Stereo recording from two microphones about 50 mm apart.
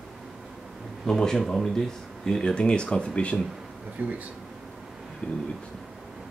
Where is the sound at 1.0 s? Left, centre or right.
Centre.